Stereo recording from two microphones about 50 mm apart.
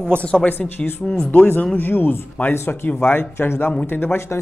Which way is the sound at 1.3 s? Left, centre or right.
Left.